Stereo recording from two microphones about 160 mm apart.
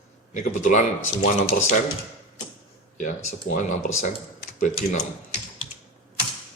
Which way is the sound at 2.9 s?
60° left (ahead or behind).